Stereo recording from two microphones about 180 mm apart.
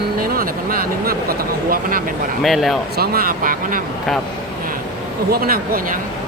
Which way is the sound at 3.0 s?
55° right (ahead or behind).